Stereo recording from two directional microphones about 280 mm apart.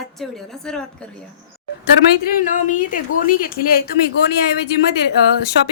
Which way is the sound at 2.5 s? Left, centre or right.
Left.